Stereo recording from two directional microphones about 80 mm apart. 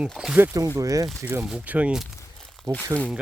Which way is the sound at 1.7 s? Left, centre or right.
Centre.